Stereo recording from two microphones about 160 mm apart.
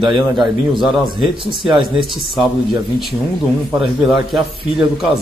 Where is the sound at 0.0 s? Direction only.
Centre (ahead or behind).